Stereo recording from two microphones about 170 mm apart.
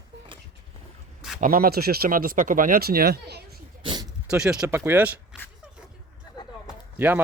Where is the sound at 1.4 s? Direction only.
60° right (ahead or behind).